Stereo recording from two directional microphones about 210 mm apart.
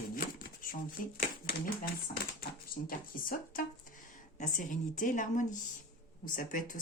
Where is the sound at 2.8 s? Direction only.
40° left (ahead or behind).